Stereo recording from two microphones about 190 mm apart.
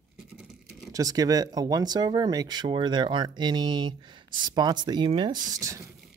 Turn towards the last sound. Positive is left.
turn(degrees=-15)  # may be behind; listen again after turning